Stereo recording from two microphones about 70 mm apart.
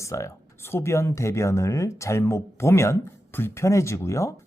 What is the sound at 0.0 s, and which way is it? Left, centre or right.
Speech, left.